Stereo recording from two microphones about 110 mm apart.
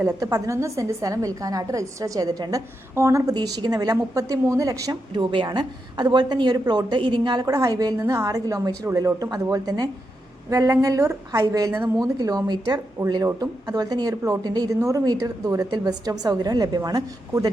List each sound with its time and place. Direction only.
0.1 s a woman's voice: 35° right (ahead or behind)
3.3 s a woman's voice: 40° right (ahead or behind)
5.1 s a woman's voice: 45° right (ahead or behind)